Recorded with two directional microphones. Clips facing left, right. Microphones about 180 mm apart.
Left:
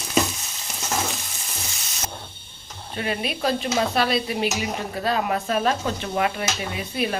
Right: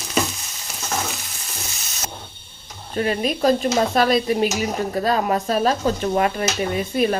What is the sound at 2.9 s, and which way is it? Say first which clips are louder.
Speech: right 6 dB; 40° right (ahead or behind).